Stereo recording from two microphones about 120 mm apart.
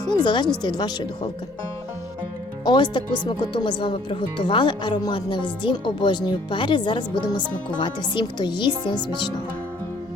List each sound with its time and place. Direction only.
0.0 s speech: 35° left (ahead or behind)
2.6 s speech: 40° left (ahead or behind)